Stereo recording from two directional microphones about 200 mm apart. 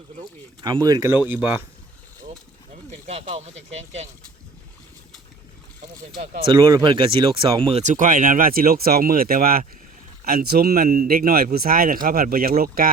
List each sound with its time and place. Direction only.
0.6 s speech: 20° right (ahead or behind)
2.9 s speech: 35° right (ahead or behind)
6.4 s speech: 25° right (ahead or behind); by 12.9 s 45° right (ahead or behind)